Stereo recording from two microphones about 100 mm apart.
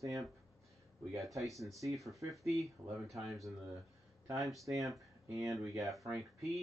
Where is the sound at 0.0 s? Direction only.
35° right (ahead or behind).